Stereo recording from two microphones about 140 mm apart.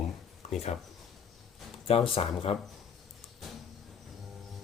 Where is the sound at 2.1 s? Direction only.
45° left (ahead or behind).